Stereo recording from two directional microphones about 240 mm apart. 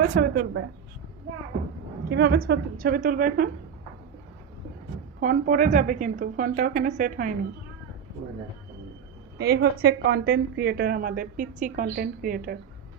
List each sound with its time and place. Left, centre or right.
0.1 s a woman's voice: right
2.0 s a woman's voice: right
5.2 s a woman's voice: right
9.4 s a woman's voice: right